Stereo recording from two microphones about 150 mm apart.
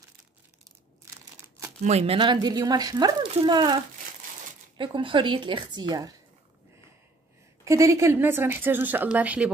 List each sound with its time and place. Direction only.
1.8 s a woman's voice: 45° right (ahead or behind); by 6.1 s 25° right (ahead or behind)
7.6 s a woman's voice: 20° right (ahead or behind)